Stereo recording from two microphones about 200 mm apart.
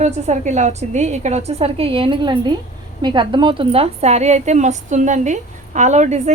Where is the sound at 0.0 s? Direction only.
35° right (ahead or behind).